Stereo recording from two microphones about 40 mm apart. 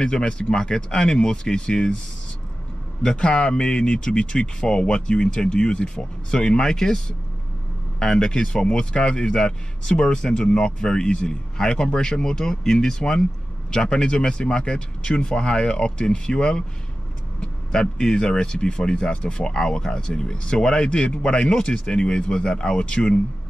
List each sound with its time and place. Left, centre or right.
0.0 s speech: centre
3.0 s speech: left